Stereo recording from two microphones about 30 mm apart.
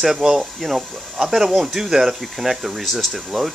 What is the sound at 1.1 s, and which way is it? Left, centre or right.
Speech, centre.